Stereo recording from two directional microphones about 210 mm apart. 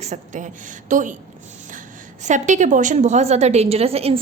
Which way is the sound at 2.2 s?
35° right (ahead or behind).